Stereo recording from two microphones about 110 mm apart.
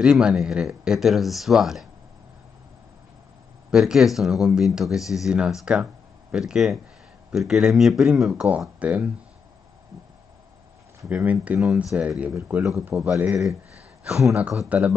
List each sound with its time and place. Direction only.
0.0 s speech: 5° right (ahead or behind)
3.7 s speech: 5° right (ahead or behind)
11.1 s speech: 10° right (ahead or behind)
12.4 s a man's voice: 25° right (ahead or behind)
12.9 s speech: 5° right (ahead or behind)